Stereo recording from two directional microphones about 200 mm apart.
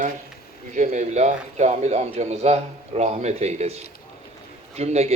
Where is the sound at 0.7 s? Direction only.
40° right (ahead or behind).